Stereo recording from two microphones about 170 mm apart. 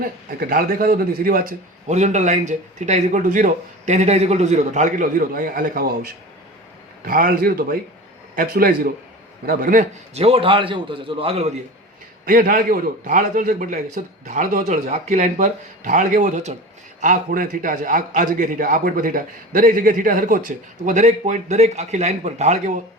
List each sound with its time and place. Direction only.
0.3 s a man's voice: 60° right (ahead or behind)
10.2 s a man's voice: 35° right (ahead or behind)
12.2 s a man's voice: 55° right (ahead or behind)